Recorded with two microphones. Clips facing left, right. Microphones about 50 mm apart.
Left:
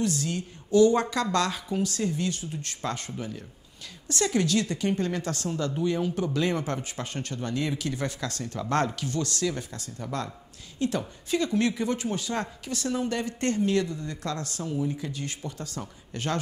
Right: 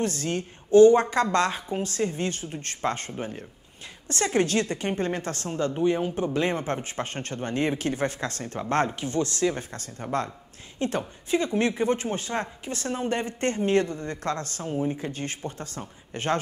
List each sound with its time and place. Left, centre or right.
0.0 s a woman's voice: right